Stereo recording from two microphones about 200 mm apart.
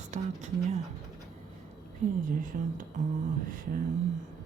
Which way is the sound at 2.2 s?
40° right (ahead or behind).